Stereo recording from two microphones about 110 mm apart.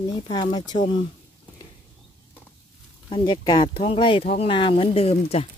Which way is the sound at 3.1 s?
40° left (ahead or behind).